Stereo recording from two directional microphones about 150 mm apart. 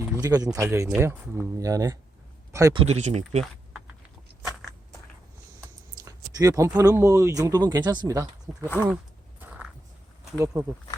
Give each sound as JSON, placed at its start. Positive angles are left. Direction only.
{"t": 0.2, "sound": "speech", "side_deg": -25}
{"t": 2.7, "sound": "speech", "side_deg": -45}
{"t": 6.1, "sound": "speech", "side_deg": -25}
{"t": 10.3, "sound": "speech", "side_deg": -15}